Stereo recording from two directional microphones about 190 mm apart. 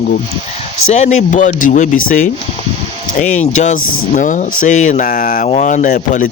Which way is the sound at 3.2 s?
40° left (ahead or behind).